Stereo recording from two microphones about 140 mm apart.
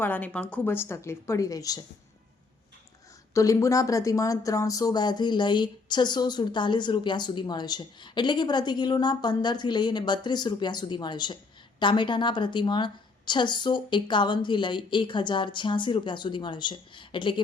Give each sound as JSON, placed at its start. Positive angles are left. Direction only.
{"t": 0.0, "sound": "speech", "side_deg": 10}
{"t": 3.3, "sound": "speech", "side_deg": 20}